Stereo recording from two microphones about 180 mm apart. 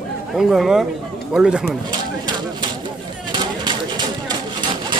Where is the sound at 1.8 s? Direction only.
25° right (ahead or behind).